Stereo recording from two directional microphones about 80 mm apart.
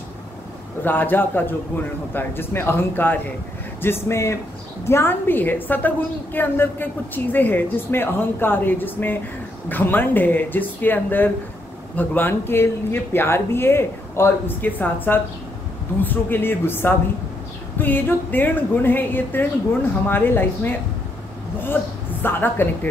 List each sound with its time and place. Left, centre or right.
0.8 s a woman's voice: left
22.2 s a woman's voice: left